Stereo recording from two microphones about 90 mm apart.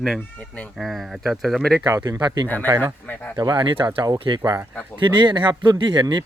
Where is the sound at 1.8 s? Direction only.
50° right (ahead or behind).